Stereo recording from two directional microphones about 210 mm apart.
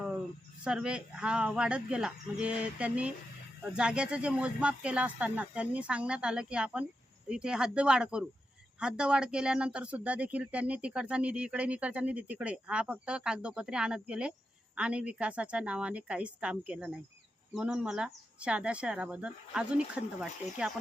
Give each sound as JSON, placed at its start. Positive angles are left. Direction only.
{"t": 0.6, "sound": "speech", "side_deg": -5}
{"t": 20.4, "sound": "speech", "side_deg": 35}